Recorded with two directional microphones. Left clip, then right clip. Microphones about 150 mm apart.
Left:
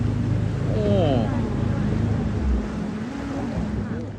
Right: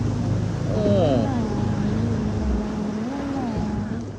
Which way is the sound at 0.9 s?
15° right (ahead or behind).